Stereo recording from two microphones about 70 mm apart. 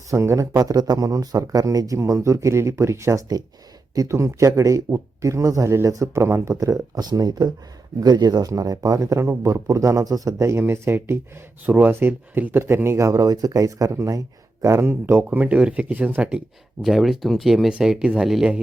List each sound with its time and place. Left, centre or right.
0.1 s speech: right
0.5 s speech: right
2.0 s speech: right
6.9 s speech: right
10.6 s speech: right
11.6 s speech: right
13.1 s speech: right
14.6 s speech: right
16.8 s speech: centre